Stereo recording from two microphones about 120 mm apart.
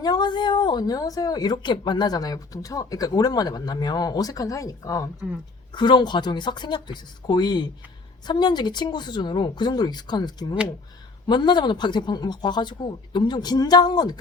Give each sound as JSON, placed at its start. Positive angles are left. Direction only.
{"t": 0.0, "sound": "speech", "side_deg": 35}
{"t": 5.7, "sound": "speech", "side_deg": 40}